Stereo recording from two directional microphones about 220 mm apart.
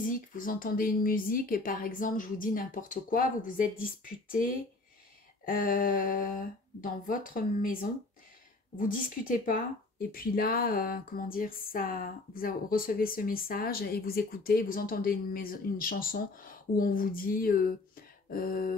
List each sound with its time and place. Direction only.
0.0 s speech: 40° left (ahead or behind)